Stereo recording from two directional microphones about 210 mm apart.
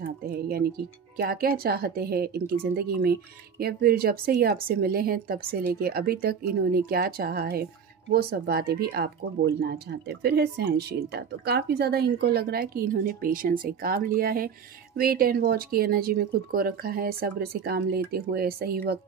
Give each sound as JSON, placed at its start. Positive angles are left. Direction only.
{"t": 0.0, "sound": "speech", "side_deg": -50}